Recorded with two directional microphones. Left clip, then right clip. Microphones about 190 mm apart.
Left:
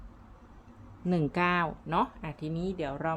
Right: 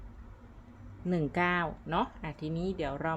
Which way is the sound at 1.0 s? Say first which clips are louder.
Left 2 dB; 10° left (ahead or behind).